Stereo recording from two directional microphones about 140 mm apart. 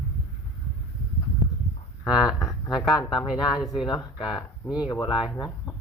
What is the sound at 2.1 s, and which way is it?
Speech, 25° left (ahead or behind).